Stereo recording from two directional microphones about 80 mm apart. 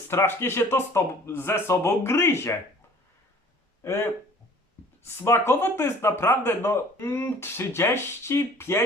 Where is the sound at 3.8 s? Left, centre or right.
Left.